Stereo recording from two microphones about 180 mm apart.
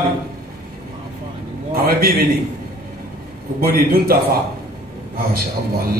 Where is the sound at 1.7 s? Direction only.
60° right (ahead or behind).